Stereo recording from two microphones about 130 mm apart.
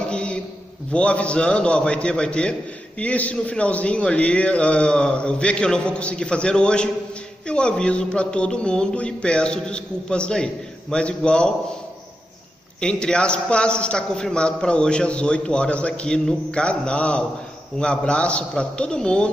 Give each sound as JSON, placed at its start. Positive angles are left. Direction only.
{"t": 0.1, "sound": "a sound", "side_deg": 10}
{"t": 0.9, "sound": "a man's voice", "side_deg": 10}
{"t": 12.8, "sound": "a man's voice", "side_deg": 5}